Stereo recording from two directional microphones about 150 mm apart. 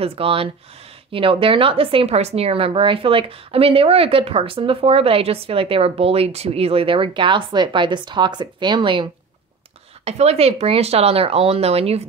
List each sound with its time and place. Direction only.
0.0 s speech: 40° right (ahead or behind)
10.0 s speech: 45° right (ahead or behind)